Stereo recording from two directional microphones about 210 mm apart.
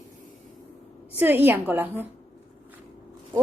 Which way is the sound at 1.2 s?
10° right (ahead or behind).